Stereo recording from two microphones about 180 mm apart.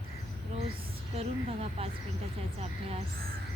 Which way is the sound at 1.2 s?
35° right (ahead or behind).